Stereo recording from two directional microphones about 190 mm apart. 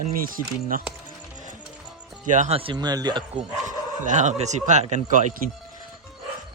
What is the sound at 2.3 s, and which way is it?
Speech, 35° right (ahead or behind).